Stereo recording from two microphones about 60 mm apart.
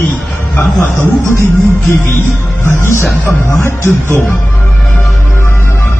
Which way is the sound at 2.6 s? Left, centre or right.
Left.